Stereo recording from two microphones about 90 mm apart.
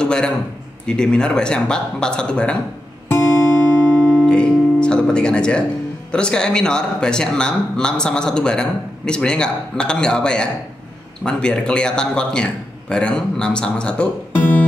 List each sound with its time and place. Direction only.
0.0 s a man's voice: 10° left (ahead or behind)
3.8 s music: 15° left (ahead or behind)
6.1 s speech: 10° left (ahead or behind)